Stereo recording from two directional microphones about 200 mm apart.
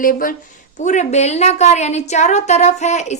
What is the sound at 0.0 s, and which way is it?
A child's voice, 45° left (ahead or behind).